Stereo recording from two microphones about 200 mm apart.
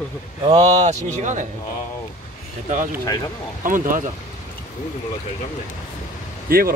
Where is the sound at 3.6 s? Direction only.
40° right (ahead or behind).